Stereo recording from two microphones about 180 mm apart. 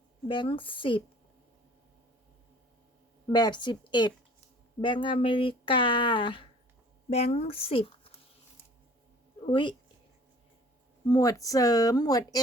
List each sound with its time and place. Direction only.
0.3 s speech: 30° left (ahead or behind)
3.2 s speech: 25° left (ahead or behind)
9.5 s speech: 30° left (ahead or behind)
11.0 s speech: 20° left (ahead or behind)